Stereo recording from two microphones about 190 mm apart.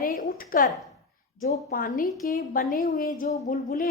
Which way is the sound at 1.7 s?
45° left (ahead or behind).